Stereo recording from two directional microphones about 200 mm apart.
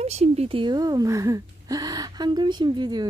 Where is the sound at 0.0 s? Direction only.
30° right (ahead or behind).